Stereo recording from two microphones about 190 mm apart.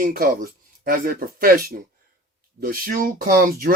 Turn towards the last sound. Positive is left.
turn(degrees=-50)  # may be behind; listen again after turning